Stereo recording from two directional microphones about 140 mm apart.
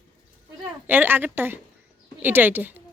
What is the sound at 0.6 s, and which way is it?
A woman's voice, 15° right (ahead or behind).